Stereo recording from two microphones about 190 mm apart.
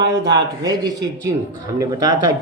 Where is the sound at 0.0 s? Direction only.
65° right (ahead or behind).